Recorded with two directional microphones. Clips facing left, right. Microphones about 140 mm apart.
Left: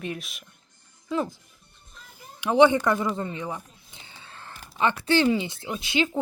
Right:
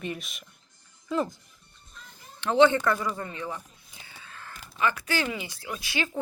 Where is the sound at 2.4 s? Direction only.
15° left (ahead or behind); by 4.6 s 30° left (ahead or behind).